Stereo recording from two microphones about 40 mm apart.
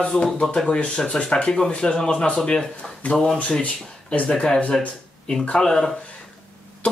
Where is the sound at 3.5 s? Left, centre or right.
Left.